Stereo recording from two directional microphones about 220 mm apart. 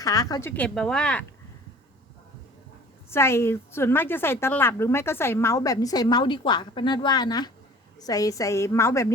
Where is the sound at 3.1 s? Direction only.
10° left (ahead or behind).